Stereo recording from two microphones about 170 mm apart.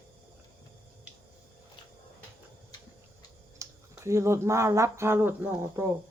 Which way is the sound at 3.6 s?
15° right (ahead or behind).